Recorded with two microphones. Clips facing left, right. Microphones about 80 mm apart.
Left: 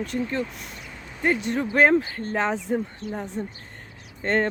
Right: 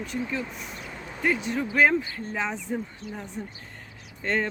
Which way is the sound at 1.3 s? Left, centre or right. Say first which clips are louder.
Left 3 dB; left.